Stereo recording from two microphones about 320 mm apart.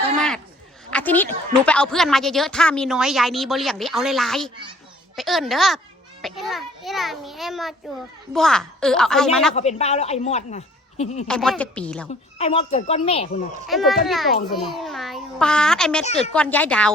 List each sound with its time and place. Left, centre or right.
0.2 s a sound: centre
1.6 s a woman's voice: centre
9.6 s speech: centre
11.3 s a woman's voice: centre
12.4 s speech: centre
13.7 s a woman's voice: centre